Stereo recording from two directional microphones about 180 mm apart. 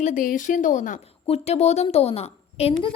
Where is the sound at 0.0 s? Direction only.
45° left (ahead or behind).